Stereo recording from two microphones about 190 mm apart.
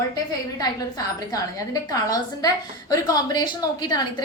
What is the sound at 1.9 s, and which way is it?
A woman's voice, 20° left (ahead or behind).